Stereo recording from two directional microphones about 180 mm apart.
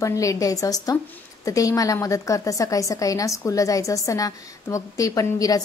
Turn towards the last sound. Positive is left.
turn(degrees=20)  # may be behind; listen again after turning